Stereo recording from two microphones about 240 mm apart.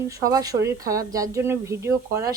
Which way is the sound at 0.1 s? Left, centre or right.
Centre.